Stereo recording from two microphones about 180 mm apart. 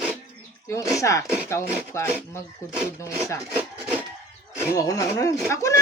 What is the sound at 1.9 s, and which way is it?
Speech, 15° left (ahead or behind).